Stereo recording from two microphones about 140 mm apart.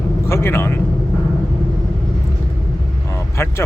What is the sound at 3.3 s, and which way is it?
Speech, 20° left (ahead or behind).